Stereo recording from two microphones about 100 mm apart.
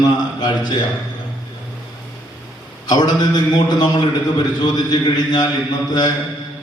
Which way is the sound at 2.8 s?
45° left (ahead or behind).